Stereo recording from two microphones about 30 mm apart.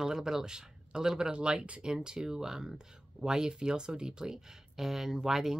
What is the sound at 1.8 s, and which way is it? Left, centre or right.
Speech, right.